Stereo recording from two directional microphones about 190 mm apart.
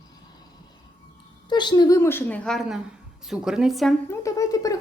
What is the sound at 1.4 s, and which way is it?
A woman's voice, 25° left (ahead or behind).